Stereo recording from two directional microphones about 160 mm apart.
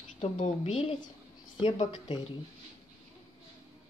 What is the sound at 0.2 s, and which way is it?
Speech, 40° left (ahead or behind).